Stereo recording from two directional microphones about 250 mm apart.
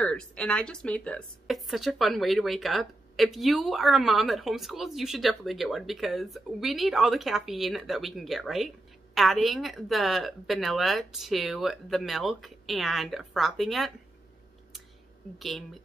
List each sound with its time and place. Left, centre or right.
0.0 s a woman's voice: centre
15.3 s a woman's voice: centre